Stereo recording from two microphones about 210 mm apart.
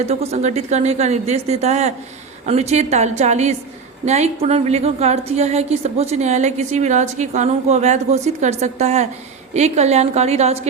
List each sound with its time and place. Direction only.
0.0 s a woman's voice: 30° right (ahead or behind)